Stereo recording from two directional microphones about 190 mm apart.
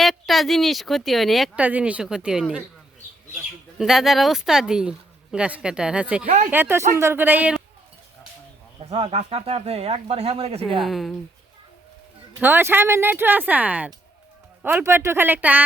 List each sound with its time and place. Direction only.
0.0 s speech: centre (ahead or behind)
3.8 s speech: centre (ahead or behind)
6.2 s speech: 40° right (ahead or behind)
6.5 s speech: 10° right (ahead or behind)
8.8 s speech: 35° right (ahead or behind)
10.8 s speech: centre (ahead or behind)
12.4 s speech: 10° right (ahead or behind)